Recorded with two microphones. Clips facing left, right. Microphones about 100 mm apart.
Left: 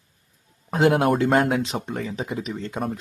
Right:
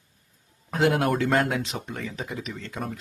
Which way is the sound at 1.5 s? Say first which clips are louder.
Left 5 dB; 30° left (ahead or behind).